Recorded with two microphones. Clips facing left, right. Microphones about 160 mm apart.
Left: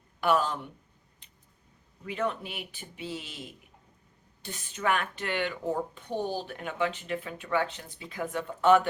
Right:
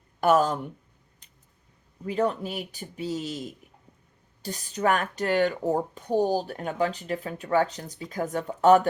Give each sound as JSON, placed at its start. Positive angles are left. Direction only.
{"t": 0.2, "sound": "speech", "side_deg": -45}
{"t": 1.2, "sound": "a sound", "side_deg": -40}
{"t": 2.0, "sound": "speech", "side_deg": -35}